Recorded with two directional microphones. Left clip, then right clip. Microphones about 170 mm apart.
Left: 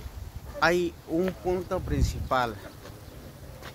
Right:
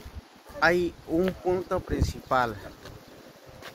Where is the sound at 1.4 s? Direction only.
25° right (ahead or behind).